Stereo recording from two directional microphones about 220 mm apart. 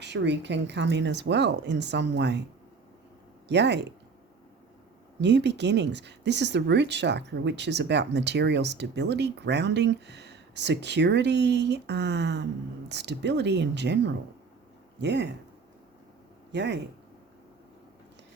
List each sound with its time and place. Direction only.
0.0 s speech: 50° right (ahead or behind)
3.5 s speech: 50° right (ahead or behind)
5.2 s speech: 50° right (ahead or behind)
16.5 s a man's voice: 50° right (ahead or behind)